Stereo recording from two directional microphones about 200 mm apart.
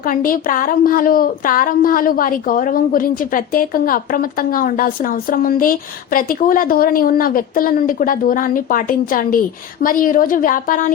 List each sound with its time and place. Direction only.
0.1 s a woman's voice: 45° left (ahead or behind)